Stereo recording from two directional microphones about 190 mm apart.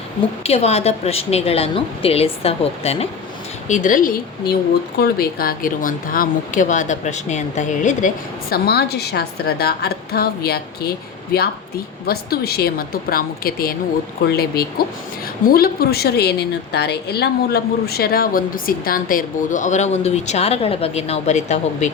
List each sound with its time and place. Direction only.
0.4 s a woman's voice: 35° left (ahead or behind); by 10.9 s 55° left (ahead or behind)
12.0 s a woman's voice: 55° left (ahead or behind); by 21.9 s 40° left (ahead or behind)